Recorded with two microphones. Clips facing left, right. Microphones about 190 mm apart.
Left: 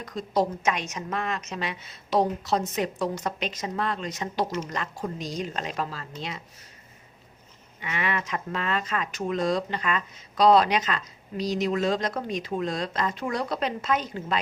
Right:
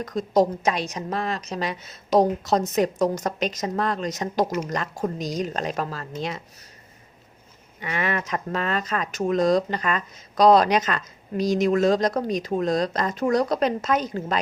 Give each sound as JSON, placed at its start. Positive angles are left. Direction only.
{"t": 0.0, "sound": "a woman's voice", "side_deg": -45}
{"t": 7.8, "sound": "speech", "side_deg": -40}